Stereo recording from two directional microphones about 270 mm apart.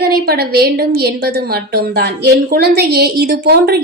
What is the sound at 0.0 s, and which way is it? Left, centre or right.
A woman's voice, right.